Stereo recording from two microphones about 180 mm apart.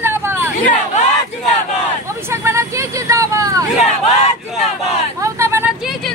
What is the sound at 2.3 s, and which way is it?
Vehicle, 15° right (ahead or behind).